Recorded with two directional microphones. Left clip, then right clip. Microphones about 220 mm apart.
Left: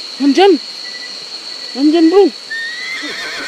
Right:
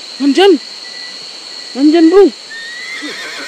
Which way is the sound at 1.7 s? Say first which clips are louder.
Right 2 dB; 20° right (ahead or behind).